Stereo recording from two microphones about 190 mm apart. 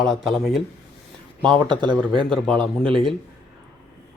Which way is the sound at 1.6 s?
25° right (ahead or behind).